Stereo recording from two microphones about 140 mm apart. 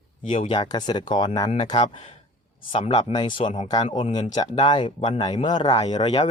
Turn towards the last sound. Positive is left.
turn(degrees=35)  # may be behind; listen again after turning